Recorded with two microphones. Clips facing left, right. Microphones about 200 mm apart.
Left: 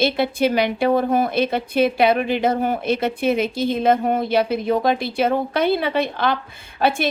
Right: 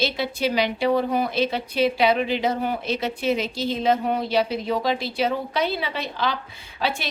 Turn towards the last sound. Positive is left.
turn(degrees=55)  # may be behind; listen again after turning